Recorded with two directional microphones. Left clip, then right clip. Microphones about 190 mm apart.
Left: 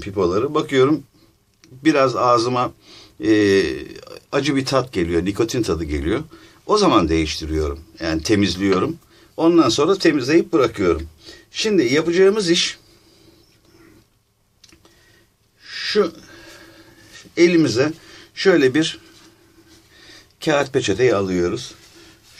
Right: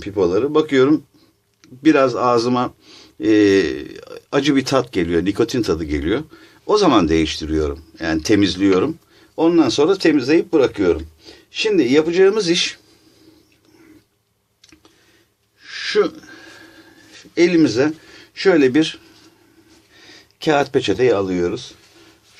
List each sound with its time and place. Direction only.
0.0 s speech: 15° right (ahead or behind)
15.6 s a sound: 35° right (ahead or behind); by 18.9 s 15° right (ahead or behind)
20.0 s speech: 15° right (ahead or behind)